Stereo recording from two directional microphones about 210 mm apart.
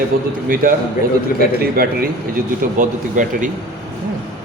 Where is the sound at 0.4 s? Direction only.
40° right (ahead or behind).